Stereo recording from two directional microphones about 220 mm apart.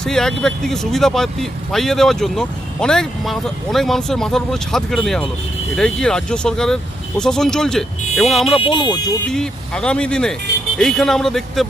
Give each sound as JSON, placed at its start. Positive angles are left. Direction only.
{"t": 0.0, "sound": "speech", "side_deg": 0}
{"t": 8.5, "sound": "speech", "side_deg": 25}
{"t": 9.3, "sound": "speech", "side_deg": 5}